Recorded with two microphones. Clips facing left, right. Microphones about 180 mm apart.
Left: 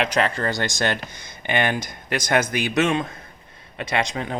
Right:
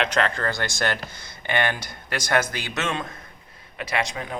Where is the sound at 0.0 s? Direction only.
10° left (ahead or behind).